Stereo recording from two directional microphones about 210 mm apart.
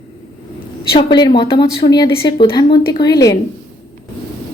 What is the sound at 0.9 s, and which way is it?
A woman's voice, 20° left (ahead or behind).